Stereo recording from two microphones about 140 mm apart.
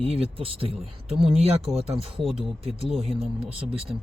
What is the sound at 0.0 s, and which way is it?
Speech, 45° right (ahead or behind).